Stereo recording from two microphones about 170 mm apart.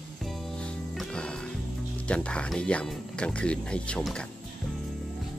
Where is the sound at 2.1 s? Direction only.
5° left (ahead or behind).